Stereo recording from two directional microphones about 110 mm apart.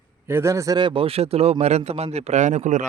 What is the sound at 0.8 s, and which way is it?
Speech, 50° right (ahead or behind).